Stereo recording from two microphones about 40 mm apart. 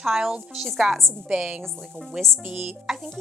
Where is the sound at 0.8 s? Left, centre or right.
Centre.